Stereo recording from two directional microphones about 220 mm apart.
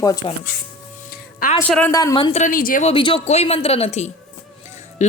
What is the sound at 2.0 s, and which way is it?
Speech, 20° left (ahead or behind).